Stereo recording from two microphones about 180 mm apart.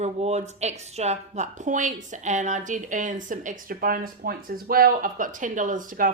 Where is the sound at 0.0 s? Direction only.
40° right (ahead or behind).